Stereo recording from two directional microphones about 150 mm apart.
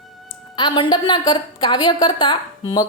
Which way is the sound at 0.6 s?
30° left (ahead or behind).